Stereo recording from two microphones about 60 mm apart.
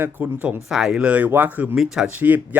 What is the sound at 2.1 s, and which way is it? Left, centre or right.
Speech, right.